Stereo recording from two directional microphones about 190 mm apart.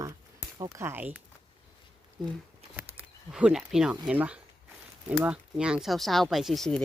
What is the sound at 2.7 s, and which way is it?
Speech, 5° right (ahead or behind).